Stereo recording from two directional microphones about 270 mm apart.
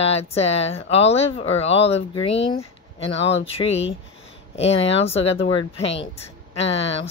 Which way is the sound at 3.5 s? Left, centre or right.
Left.